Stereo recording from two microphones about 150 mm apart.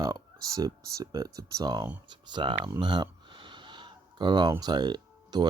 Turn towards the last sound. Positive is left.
turn(degrees=-30)  # may be behind; listen again after turning